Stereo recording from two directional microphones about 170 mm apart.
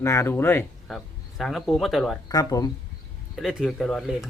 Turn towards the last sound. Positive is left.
turn(degrees=0)  # may be behind; listen again after turning